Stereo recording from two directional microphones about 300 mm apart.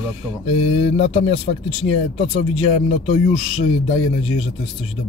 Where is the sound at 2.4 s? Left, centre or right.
Centre.